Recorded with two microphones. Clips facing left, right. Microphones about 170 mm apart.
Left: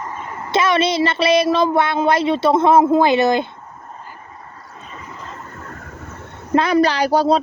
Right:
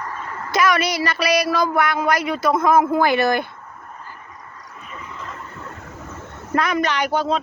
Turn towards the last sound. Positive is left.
turn(degrees=35)  # may be behind; listen again after turning